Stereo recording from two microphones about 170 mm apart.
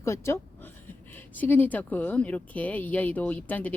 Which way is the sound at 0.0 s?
15° left (ahead or behind).